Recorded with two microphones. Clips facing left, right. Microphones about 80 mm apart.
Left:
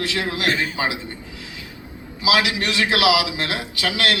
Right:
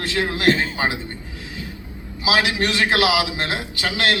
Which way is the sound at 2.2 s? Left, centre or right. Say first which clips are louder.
Even; right.